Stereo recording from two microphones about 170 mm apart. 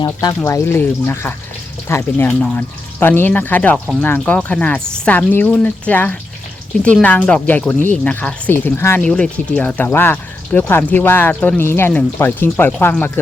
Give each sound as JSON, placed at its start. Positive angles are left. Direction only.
{"t": 0.0, "sound": "speech", "side_deg": 20}